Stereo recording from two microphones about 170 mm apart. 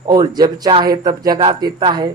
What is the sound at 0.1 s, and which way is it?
Speech, 25° right (ahead or behind).